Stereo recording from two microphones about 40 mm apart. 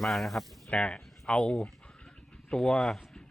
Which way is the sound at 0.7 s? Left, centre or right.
Left.